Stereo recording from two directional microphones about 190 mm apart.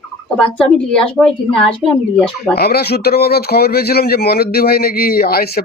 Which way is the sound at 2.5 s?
55° left (ahead or behind).